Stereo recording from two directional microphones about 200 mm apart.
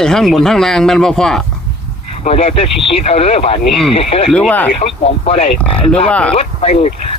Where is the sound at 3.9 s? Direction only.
30° left (ahead or behind).